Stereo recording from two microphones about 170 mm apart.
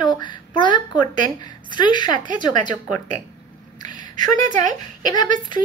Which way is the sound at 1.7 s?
25° left (ahead or behind).